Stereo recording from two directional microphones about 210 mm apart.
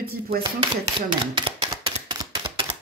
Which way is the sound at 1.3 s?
25° right (ahead or behind).